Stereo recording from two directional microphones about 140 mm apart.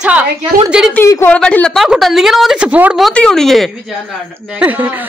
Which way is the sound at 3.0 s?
5° left (ahead or behind).